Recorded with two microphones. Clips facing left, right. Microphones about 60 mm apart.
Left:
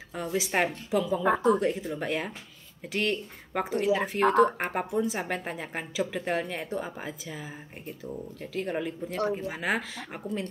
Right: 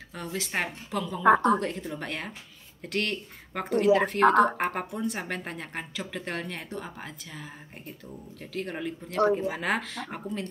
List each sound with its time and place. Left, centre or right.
0.1 s speech: centre
1.3 s a woman's voice: right
1.6 s speech: centre